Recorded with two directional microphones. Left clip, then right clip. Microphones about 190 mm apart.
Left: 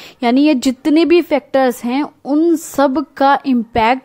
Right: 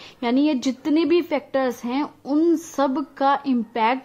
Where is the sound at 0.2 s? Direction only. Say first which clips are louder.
Left 8 dB; 35° left (ahead or behind).